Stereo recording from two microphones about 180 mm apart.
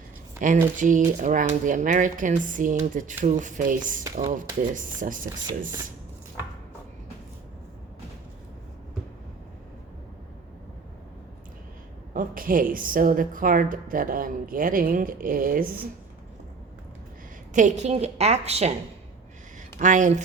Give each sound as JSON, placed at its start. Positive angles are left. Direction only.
{"t": 0.3, "sound": "a woman's voice", "side_deg": -45}
{"t": 12.1, "sound": "a woman's voice", "side_deg": -50}
{"t": 17.5, "sound": "a woman's voice", "side_deg": -45}
{"t": 19.8, "sound": "a woman's voice", "side_deg": -45}